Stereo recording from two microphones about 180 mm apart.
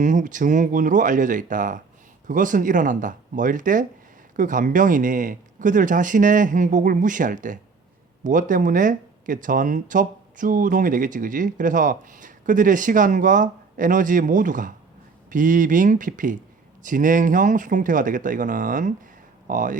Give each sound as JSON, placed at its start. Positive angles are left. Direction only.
{"t": 0.0, "sound": "speech", "side_deg": -45}